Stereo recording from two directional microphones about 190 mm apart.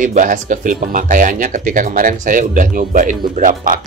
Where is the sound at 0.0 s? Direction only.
40° right (ahead or behind).